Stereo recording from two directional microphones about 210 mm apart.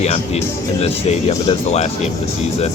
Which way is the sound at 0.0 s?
30° left (ahead or behind).